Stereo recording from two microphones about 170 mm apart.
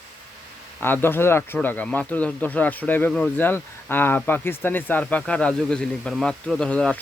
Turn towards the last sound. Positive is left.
turn(degrees=5)  # may be behind; listen again after turning